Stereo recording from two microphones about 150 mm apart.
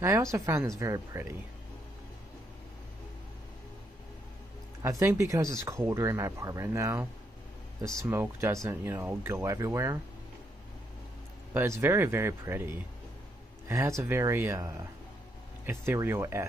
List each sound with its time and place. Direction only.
0.0 s speech: 20° right (ahead or behind)
4.8 s speech: 20° right (ahead or behind)
11.5 s speech: 20° right (ahead or behind)